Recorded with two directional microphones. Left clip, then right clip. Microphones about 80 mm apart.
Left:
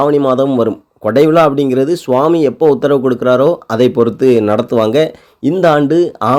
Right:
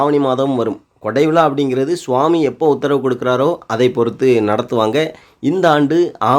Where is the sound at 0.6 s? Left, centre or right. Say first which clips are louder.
Left 5 dB; left.